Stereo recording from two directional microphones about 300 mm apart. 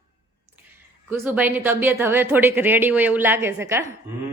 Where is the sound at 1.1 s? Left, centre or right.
Centre.